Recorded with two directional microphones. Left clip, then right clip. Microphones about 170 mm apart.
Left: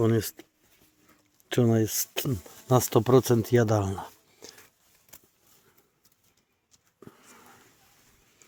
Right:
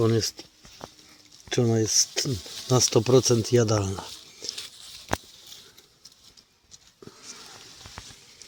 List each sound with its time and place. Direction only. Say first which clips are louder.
0.0 s speech: right 2 dB; 20° left (ahead or behind)
1.5 s speech: right 1 dB; 40° left (ahead or behind); by 4.6 s 20° left (ahead or behind)